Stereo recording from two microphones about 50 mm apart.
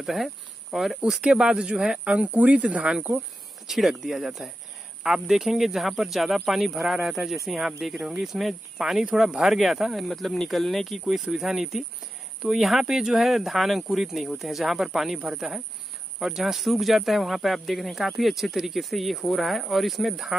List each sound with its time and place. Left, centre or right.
0.0 s speech: centre; by 3.1 s right
3.6 s speech: centre